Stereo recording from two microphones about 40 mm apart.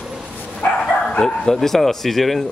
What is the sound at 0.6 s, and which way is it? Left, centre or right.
Bow-wow, left.